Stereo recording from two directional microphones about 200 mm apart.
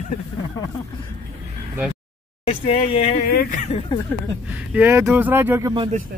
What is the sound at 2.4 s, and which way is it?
Speech, 30° left (ahead or behind).